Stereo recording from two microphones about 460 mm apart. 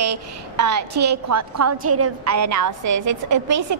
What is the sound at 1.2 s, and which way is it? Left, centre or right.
A woman's voice, right.